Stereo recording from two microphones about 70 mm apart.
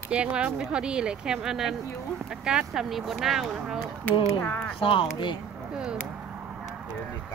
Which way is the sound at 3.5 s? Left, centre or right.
Centre.